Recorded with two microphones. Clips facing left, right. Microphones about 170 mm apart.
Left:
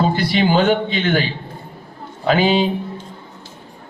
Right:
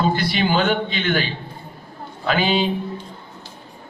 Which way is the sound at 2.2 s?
30° left (ahead or behind).